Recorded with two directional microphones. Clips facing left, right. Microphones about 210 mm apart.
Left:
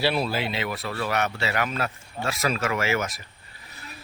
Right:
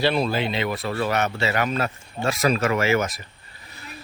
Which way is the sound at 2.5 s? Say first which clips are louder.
Right 5 dB; 40° right (ahead or behind).